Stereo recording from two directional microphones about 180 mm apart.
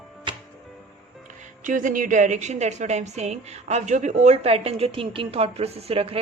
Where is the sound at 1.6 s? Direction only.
45° right (ahead or behind).